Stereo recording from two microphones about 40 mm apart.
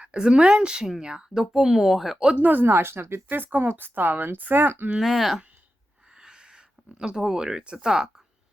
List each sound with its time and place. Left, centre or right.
0.0 s speech: right; by 2.1 s centre
2.1 s speech: right
2.4 s speech: right
2.6 s speech: right
4.9 s speech: centre
6.1 s a sound: right
7.0 s speech: centre